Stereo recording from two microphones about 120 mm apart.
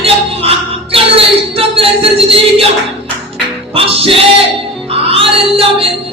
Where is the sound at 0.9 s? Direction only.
50° right (ahead or behind).